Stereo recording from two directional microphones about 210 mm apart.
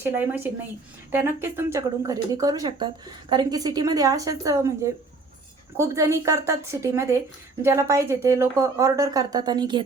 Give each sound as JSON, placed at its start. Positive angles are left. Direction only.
{"t": 0.0, "sound": "speech", "side_deg": -10}